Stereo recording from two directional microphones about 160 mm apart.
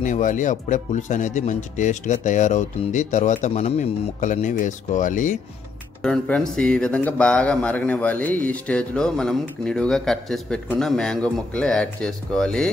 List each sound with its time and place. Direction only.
0.0 s speech: 50° left (ahead or behind)
6.0 s speech: 5° left (ahead or behind)